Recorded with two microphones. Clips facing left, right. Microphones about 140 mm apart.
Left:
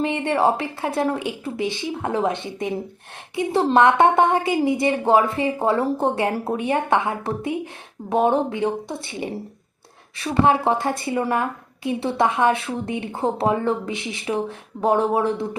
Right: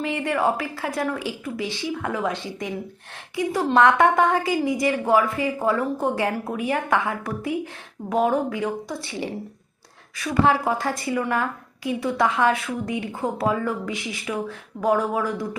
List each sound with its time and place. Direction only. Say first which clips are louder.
0.0 s a woman's voice: left 3 dB; 25° left (ahead or behind)